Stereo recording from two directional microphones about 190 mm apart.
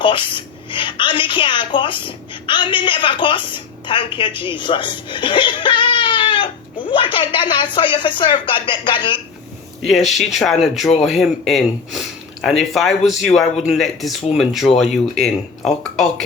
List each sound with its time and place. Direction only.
0.0 s a woman's voice: 25° left (ahead or behind)
9.8 s speech: centre (ahead or behind)